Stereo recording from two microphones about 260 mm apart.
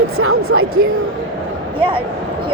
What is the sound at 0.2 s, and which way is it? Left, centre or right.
Speech, right.